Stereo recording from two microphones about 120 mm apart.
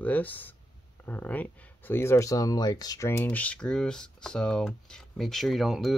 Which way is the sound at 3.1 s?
15° left (ahead or behind).